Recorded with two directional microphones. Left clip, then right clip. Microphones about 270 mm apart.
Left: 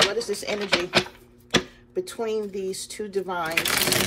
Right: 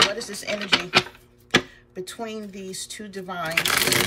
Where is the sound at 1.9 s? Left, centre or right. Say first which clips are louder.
Left 6 dB; centre.